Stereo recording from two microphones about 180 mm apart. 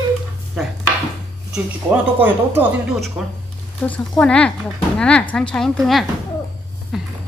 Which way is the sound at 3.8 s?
5° left (ahead or behind).